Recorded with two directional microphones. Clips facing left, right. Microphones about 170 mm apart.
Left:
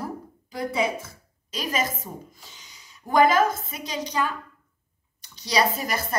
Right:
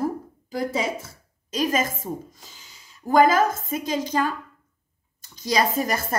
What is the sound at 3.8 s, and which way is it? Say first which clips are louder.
Speech: right 3 dB; 45° right (ahead or behind).